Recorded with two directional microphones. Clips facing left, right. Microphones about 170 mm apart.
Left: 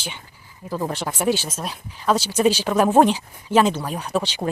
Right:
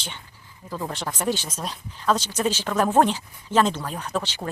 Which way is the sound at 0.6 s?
20° left (ahead or behind).